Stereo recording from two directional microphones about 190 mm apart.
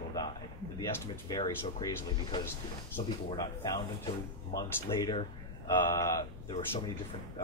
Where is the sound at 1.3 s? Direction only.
20° left (ahead or behind).